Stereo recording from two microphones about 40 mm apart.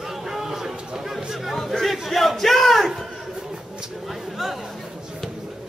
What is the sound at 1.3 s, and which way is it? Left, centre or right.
Chatter, centre.